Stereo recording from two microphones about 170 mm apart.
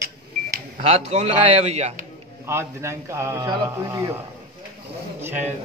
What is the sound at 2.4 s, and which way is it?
A man's voice, 15° right (ahead or behind).